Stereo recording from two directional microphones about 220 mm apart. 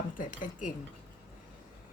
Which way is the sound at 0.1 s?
35° left (ahead or behind).